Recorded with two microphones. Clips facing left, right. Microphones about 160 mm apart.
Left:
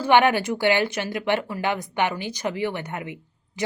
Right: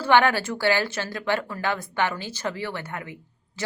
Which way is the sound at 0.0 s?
15° left (ahead or behind).